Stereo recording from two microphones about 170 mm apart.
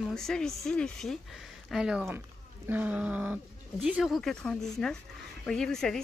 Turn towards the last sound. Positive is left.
turn(degrees=5)  # may be behind; listen again after turning